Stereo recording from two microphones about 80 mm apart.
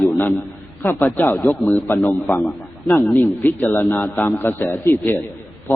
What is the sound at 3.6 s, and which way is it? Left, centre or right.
A man's voice, left.